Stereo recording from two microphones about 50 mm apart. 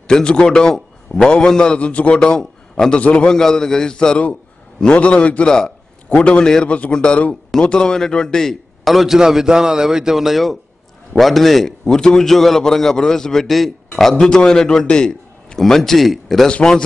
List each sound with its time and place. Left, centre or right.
0.1 s a man's voice: centre
2.1 s a man's voice: centre
3.3 s a man's voice: centre
8.8 s a man's voice: centre